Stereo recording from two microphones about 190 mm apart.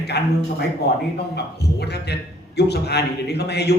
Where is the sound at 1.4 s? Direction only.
60° left (ahead or behind).